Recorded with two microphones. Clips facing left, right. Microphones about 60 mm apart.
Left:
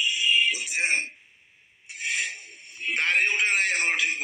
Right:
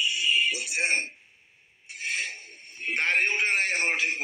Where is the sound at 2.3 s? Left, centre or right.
Right.